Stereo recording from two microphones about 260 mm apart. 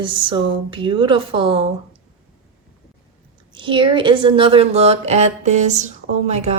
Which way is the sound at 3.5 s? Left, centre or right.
Centre.